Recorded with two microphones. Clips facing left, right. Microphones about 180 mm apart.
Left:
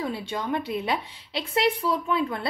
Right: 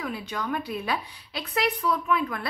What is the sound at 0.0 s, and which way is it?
A woman's voice, 30° left (ahead or behind).